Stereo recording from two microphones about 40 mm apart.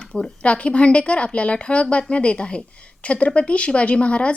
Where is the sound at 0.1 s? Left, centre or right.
Left.